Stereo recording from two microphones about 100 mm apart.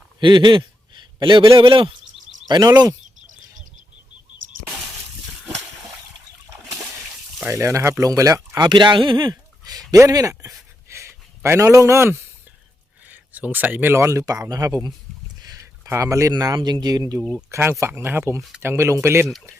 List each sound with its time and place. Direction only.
0.2 s a sound: 50° right (ahead or behind)
1.5 s a man's voice: 55° right (ahead or behind)
7.4 s speech: 30° right (ahead or behind)
15.4 s a sound: 40° right (ahead or behind)
15.9 s speech: 30° right (ahead or behind)
17.5 s speech: 25° right (ahead or behind)